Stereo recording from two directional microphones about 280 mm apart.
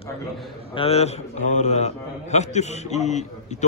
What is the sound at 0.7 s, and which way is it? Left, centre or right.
A man's voice, left.